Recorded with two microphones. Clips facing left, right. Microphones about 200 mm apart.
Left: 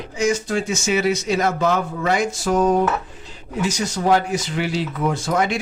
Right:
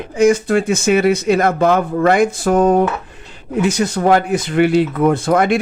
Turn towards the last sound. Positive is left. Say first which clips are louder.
# right 7 dB
turn(degrees=-55)  # may be behind; listen again after turning